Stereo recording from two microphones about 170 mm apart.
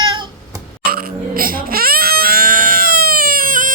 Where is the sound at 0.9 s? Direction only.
60° right (ahead or behind).